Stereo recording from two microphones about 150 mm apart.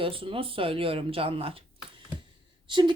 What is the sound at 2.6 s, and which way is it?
Speech, 30° right (ahead or behind).